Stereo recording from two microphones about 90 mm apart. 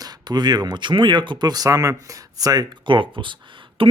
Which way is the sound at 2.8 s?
65° right (ahead or behind).